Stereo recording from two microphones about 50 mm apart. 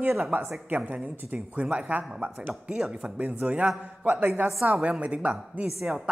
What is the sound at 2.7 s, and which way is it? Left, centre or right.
Speech, centre.